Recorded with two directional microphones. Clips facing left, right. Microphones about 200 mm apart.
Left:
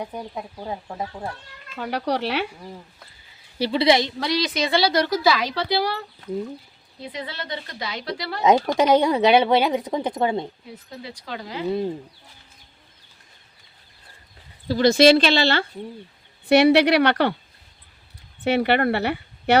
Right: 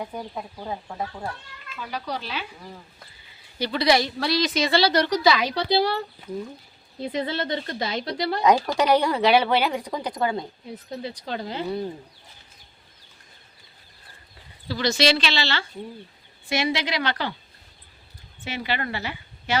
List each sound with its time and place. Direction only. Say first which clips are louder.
0.3 s a woman's voice: left 1 dB; 15° left (ahead or behind)
1.7 s speech: left 7 dB; 65° left (ahead or behind)
3.6 s a woman's voice: left 3 dB; 25° left (ahead or behind); by 5.5 s 5° left (ahead or behind)
5.5 s a woman's voice: right 1 dB; 25° right (ahead or behind)
7.0 s a woman's voice: right 6 dB; 40° right (ahead or behind)
7.8 s a woman's voice: right 3 dB; 25° right (ahead or behind)
8.4 s speech: left 3 dB; 20° left (ahead or behind)
11.3 s a woman's voice: right 1 dB; 30° right (ahead or behind)
14.7 s speech: left 8 dB; 50° left (ahead or behind)
16.5 s speech: left 11 dB; 65° left (ahead or behind)
18.4 s speech: left 10 dB; 60° left (ahead or behind)